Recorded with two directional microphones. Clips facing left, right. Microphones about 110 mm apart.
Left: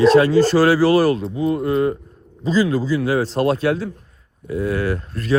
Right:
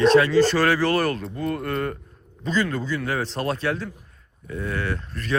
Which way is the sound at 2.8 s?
35° left (ahead or behind).